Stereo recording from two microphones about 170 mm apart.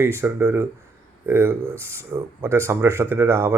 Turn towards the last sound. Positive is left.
turn(degrees=-15)  # may be behind; listen again after turning